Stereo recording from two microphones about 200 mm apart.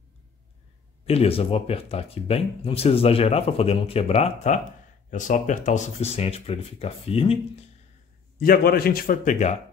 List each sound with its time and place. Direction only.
1.0 s speech: 30° left (ahead or behind)
8.4 s a man's voice: 50° left (ahead or behind)